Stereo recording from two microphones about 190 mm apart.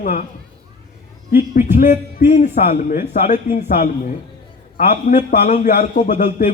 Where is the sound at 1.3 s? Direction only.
45° left (ahead or behind).